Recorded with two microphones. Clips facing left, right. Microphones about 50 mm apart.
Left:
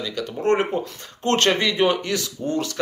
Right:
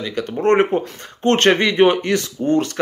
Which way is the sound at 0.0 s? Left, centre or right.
Right.